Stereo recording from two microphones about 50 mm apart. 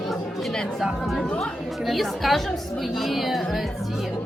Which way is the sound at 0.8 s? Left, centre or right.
Centre.